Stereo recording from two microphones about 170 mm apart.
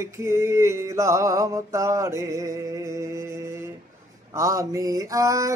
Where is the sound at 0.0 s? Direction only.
15° right (ahead or behind).